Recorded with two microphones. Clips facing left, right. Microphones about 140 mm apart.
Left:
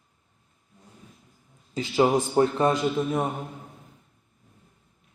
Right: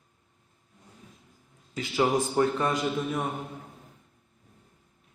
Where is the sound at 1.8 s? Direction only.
25° left (ahead or behind).